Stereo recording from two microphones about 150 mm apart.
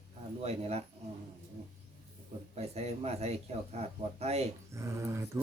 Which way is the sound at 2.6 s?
45° right (ahead or behind).